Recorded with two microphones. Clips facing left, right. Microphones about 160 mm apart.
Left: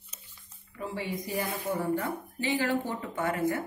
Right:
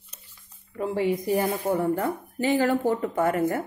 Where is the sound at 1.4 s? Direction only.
60° right (ahead or behind).